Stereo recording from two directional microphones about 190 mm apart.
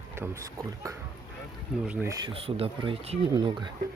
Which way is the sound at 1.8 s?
10° right (ahead or behind).